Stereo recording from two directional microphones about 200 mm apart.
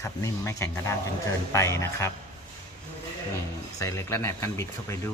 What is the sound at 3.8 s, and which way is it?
Speech, 15° left (ahead or behind).